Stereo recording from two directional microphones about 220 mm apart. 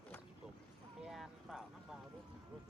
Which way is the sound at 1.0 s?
Centre (ahead or behind).